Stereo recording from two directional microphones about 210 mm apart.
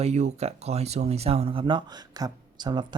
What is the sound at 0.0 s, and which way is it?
Speech, 35° right (ahead or behind).